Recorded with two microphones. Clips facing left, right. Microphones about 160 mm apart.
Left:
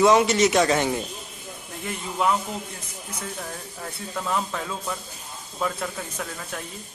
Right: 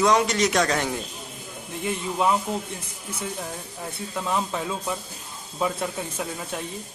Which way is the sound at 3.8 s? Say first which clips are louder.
Right 1 dB; 15° right (ahead or behind).